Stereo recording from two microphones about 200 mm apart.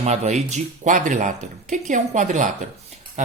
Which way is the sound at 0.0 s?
35° right (ahead or behind).